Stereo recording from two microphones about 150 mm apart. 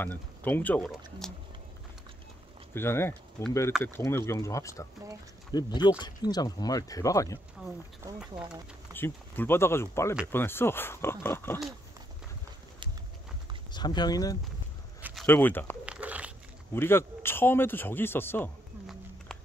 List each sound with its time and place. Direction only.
0.0 s a man's voice: 10° left (ahead or behind)
2.7 s speech: 15° left (ahead or behind)
8.9 s a man's voice: 15° left (ahead or behind)
13.7 s speech: 30° left (ahead or behind)
15.2 s a man's voice: 10° left (ahead or behind)
15.8 s crumpling: 10° right (ahead or behind)
16.7 s a man's voice: 15° left (ahead or behind)